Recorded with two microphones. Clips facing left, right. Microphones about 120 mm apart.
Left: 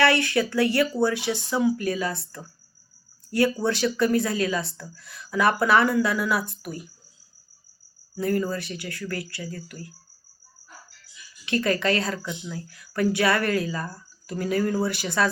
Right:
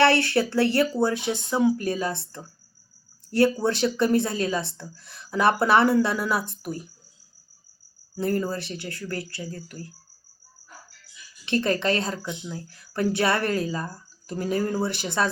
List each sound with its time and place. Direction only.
0.0 s a woman's voice: 30° right (ahead or behind)
8.1 s a woman's voice: 30° right (ahead or behind)
11.4 s a woman's voice: 25° right (ahead or behind)